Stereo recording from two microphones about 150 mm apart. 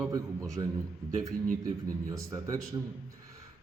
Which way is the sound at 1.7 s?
20° right (ahead or behind).